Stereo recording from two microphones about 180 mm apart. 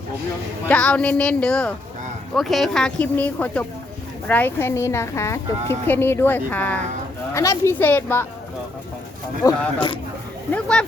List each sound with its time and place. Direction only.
0.7 s a woman's voice: 5° left (ahead or behind)
9.4 s speech: 25° left (ahead or behind)
10.5 s speech: 5° left (ahead or behind)